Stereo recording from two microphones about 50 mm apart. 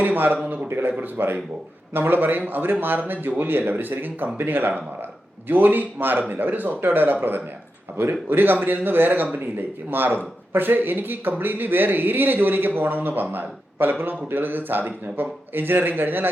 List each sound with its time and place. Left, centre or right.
0.0 s a man's voice: right
0.7 s a man's voice: right